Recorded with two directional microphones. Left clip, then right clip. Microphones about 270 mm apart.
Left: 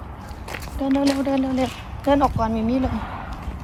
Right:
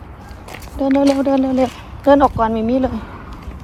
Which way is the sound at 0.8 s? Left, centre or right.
Right.